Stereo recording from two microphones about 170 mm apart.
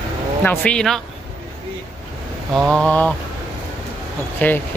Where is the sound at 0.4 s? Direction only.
10° left (ahead or behind).